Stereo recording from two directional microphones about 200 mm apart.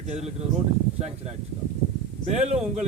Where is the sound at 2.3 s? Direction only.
35° right (ahead or behind).